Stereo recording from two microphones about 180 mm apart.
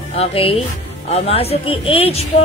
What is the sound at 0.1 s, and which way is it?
Speech, 35° left (ahead or behind).